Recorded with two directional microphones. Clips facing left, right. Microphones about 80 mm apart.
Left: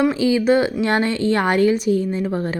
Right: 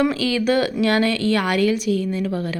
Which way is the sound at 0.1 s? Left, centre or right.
Left.